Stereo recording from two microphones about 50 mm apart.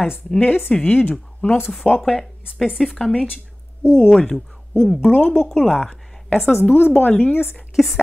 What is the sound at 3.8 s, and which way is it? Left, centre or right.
Speech, left.